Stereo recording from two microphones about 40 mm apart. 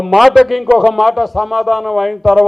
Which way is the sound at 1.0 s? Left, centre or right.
Centre.